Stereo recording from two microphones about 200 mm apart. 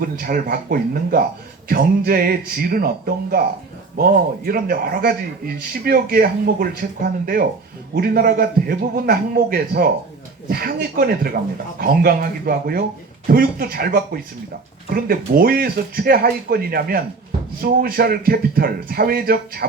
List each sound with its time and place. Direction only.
0.0 s speech: 50° right (ahead or behind)
3.9 s speech: 50° right (ahead or behind)